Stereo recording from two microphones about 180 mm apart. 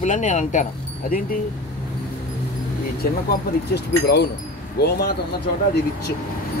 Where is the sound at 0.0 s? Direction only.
40° left (ahead or behind).